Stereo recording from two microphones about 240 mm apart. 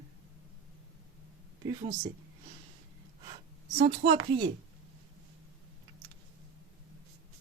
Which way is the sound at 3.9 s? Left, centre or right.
Right.